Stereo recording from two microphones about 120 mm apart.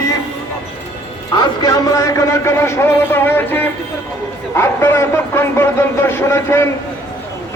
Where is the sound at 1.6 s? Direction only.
30° left (ahead or behind).